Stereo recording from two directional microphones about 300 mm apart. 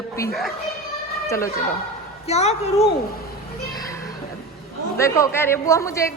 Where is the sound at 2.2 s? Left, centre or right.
Left.